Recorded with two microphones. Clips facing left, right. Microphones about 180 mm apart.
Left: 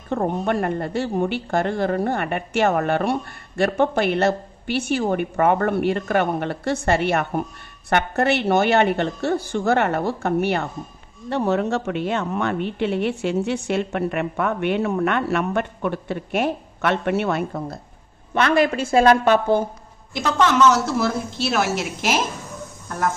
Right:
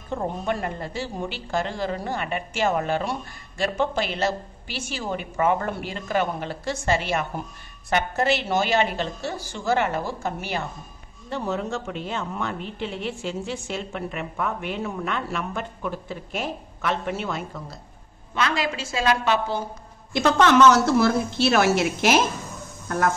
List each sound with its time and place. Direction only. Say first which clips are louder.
0.1 s a woman's voice: left 5 dB; 60° left (ahead or behind)
20.1 s a woman's voice: right 2 dB; 65° right (ahead or behind)